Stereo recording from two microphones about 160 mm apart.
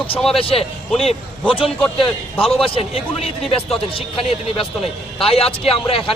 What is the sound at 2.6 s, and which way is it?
A man's voice, 35° left (ahead or behind).